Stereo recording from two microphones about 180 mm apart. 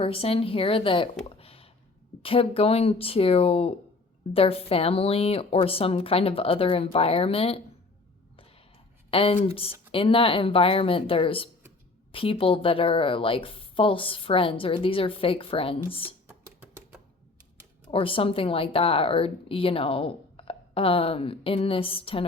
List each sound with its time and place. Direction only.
0.0 s speech: 30° left (ahead or behind)
1.2 s a sound: 30° left (ahead or behind)
2.2 s speech: 30° left (ahead or behind)
9.0 s a woman's voice: 30° left (ahead or behind)
16.3 s music: 5° right (ahead or behind)
17.9 s speech: 30° left (ahead or behind)